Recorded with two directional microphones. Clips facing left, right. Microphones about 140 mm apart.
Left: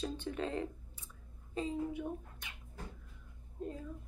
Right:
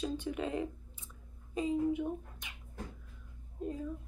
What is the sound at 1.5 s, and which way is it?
Speech, 15° right (ahead or behind).